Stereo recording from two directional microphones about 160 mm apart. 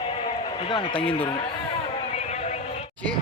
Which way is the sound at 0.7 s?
35° left (ahead or behind).